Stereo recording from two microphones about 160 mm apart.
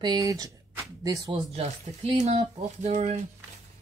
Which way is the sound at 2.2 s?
40° right (ahead or behind).